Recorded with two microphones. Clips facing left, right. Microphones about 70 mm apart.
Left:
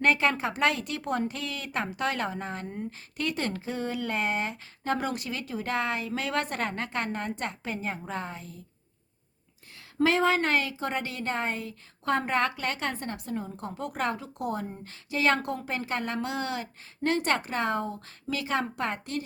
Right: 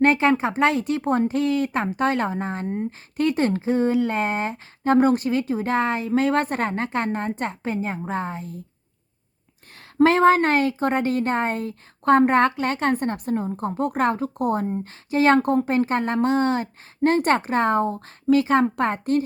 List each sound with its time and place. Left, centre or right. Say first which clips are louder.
0.0 s speech: right 7 dB; right
10.0 s speech: right 8 dB; right